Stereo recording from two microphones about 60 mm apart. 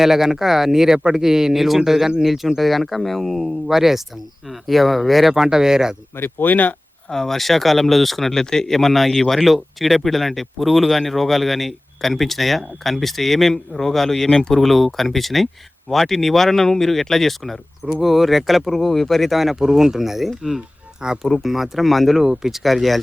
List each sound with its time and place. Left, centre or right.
0.0 s speech: centre
6.1 s speech: left
7.1 s speech: centre